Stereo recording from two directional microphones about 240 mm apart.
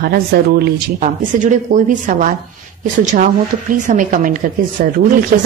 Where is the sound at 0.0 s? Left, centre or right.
Right.